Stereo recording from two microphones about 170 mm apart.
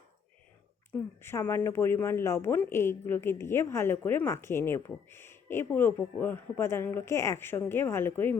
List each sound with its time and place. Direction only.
1.2 s speech: 15° left (ahead or behind)